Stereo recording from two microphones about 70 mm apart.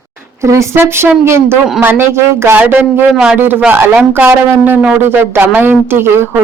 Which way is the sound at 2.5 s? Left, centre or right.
Right.